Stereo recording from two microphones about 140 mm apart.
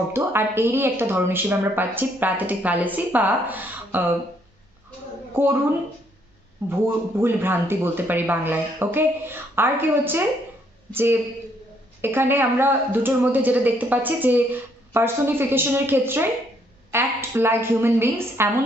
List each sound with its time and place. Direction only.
0.1 s speech: 15° right (ahead or behind)
5.3 s speech: 15° right (ahead or behind)
6.7 s speech: 15° right (ahead or behind)